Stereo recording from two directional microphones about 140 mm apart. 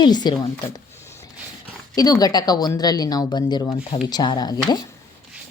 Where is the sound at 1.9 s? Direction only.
25° left (ahead or behind).